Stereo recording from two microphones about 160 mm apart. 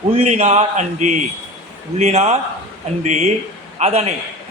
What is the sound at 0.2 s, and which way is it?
Speech, 45° right (ahead or behind).